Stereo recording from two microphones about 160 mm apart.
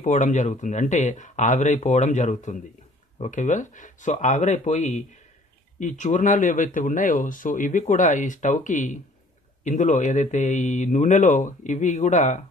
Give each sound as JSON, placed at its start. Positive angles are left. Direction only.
{"t": 0.0, "sound": "speech", "side_deg": 50}